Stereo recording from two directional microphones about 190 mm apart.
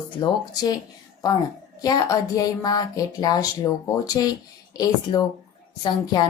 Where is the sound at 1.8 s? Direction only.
20° left (ahead or behind).